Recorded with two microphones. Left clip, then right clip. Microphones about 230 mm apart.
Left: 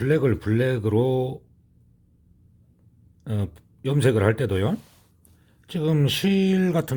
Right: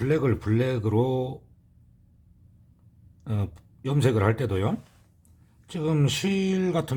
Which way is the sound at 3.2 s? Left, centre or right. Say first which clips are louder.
Left 3 dB; centre.